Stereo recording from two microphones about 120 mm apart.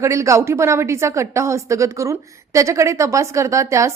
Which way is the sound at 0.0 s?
25° right (ahead or behind).